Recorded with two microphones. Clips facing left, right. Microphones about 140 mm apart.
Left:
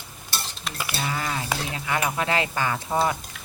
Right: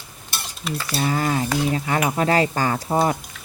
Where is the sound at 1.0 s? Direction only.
40° right (ahead or behind).